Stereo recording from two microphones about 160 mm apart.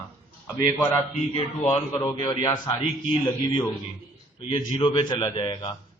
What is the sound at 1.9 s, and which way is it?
A man's voice, 25° left (ahead or behind).